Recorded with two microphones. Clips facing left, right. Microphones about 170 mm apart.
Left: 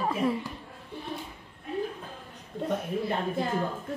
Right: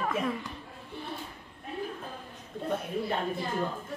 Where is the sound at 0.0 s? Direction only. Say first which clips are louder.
Left 3 dB; 30° left (ahead or behind).